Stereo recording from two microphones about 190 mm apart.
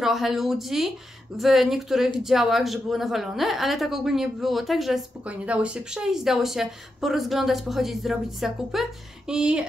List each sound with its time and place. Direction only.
0.0 s a woman's voice: centre (ahead or behind)